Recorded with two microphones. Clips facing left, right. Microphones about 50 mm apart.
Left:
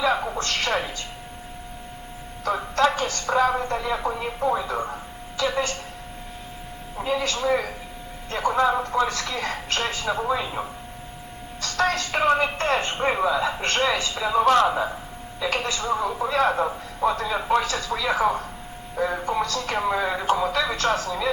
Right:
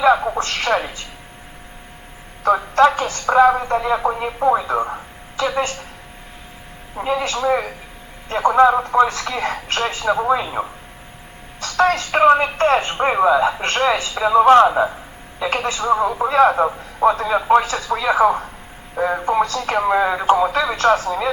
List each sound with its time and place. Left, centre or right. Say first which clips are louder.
0.0 s a sound: right 8 dB; right
0.3 s speech: right 5 dB; right
2.4 s a sound: right 8 dB; right
3.7 s speech: right 7 dB; right
6.9 s speech: right 4 dB; right
13.2 s speech: right 7 dB; right